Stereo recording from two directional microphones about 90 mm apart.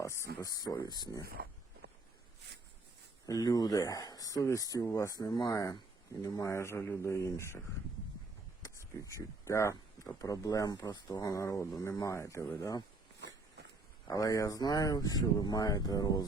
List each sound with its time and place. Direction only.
0.0 s speech: 35° left (ahead or behind)
3.2 s speech: 45° left (ahead or behind)
5.5 s speech: 40° left (ahead or behind)
8.6 s a sound: 35° left (ahead or behind)
9.1 s speech: 35° left (ahead or behind)
14.1 s speech: 40° left (ahead or behind)